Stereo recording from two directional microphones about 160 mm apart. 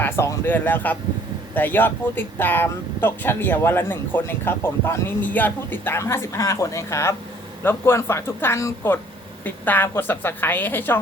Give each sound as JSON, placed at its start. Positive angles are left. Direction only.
{"t": 0.0, "sound": "speech", "side_deg": 15}